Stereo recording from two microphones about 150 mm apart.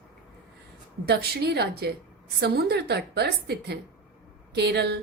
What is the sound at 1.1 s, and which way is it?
A woman's voice, 90° right.